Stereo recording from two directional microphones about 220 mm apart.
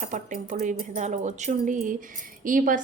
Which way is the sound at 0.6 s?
35° right (ahead or behind).